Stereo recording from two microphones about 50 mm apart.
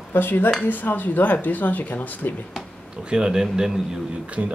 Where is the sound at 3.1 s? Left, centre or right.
Centre.